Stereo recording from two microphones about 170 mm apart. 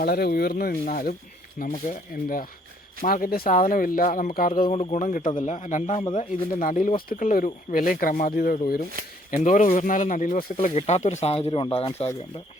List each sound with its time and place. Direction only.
0.0 s speech: 65° left (ahead or behind); by 12.0 s 35° left (ahead or behind)